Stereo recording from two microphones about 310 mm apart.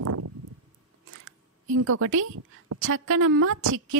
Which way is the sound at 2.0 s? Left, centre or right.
Right.